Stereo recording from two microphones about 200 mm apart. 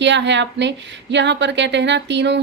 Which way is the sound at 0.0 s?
60° right (ahead or behind).